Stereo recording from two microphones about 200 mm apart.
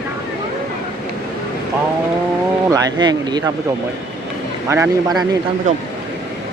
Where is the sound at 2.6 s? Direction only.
20° right (ahead or behind).